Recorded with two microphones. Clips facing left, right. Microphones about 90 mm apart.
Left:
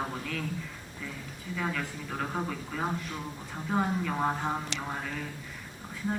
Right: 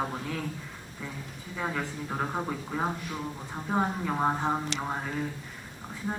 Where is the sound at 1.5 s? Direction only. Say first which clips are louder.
Right 1 dB; 25° right (ahead or behind).